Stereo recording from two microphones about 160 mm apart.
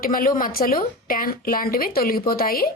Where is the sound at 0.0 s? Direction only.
60° left (ahead or behind).